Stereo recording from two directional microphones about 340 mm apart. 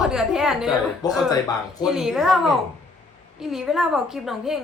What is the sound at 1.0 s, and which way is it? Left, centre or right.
Speech, centre.